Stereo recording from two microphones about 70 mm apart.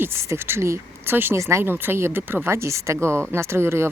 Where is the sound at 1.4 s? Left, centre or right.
Right.